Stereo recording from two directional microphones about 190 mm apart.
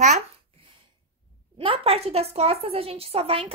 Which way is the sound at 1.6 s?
30° right (ahead or behind).